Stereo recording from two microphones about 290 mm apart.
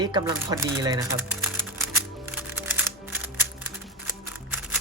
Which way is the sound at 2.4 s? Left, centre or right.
Centre.